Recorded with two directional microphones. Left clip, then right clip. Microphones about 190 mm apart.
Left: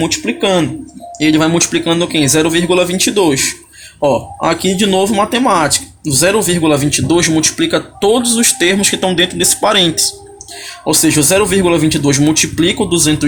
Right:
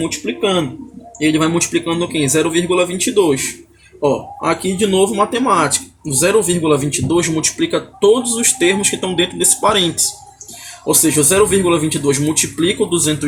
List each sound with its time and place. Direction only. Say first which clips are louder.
0.0 s speech: left 4 dB; 55° left (ahead or behind)